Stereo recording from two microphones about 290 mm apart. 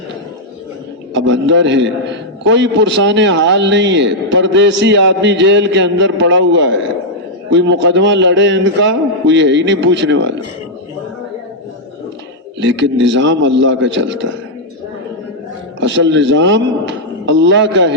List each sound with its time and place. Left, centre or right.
1.1 s a man's voice: right
12.5 s a man's voice: right
15.8 s a man's voice: right